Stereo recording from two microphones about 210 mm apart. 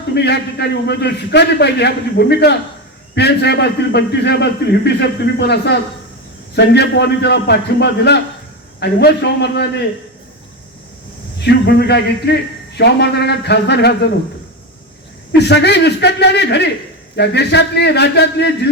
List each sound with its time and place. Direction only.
0.1 s a man's voice: 50° left (ahead or behind)
6.7 s a man's voice: 55° left (ahead or behind)
11.3 s a man's voice: 55° left (ahead or behind)
15.3 s a man's voice: 55° left (ahead or behind)